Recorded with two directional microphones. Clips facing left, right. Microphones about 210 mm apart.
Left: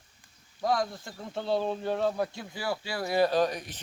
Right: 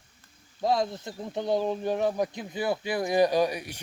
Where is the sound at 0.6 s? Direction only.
25° right (ahead or behind).